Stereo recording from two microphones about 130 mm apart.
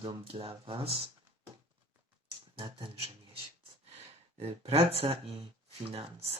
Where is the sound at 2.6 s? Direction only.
40° right (ahead or behind).